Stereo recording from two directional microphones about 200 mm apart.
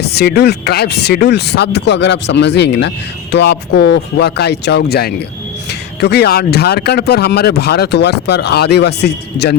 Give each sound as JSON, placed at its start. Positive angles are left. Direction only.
{"t": 0.0, "sound": "speech", "side_deg": 55}